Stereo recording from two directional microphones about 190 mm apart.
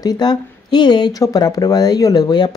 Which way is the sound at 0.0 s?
20° left (ahead or behind).